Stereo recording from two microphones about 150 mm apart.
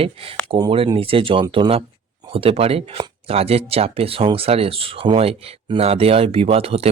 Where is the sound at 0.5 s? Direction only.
35° right (ahead or behind).